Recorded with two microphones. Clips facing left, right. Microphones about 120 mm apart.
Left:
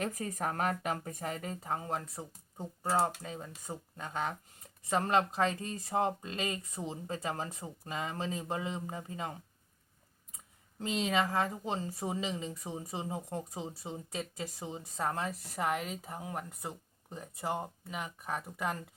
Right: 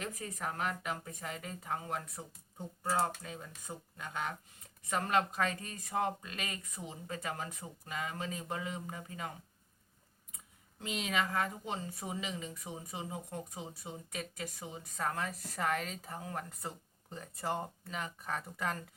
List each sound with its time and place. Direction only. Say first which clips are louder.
0.0 s a woman's voice: left 5 dB; 45° left (ahead or behind); by 9.3 s 25° left (ahead or behind)
10.8 s a woman's voice: left 4 dB; 30° left (ahead or behind); by 18.8 s 15° left (ahead or behind)